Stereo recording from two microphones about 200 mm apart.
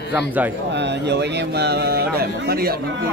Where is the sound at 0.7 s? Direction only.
60° right (ahead or behind).